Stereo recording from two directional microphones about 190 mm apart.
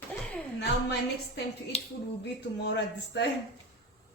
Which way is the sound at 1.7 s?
35° left (ahead or behind).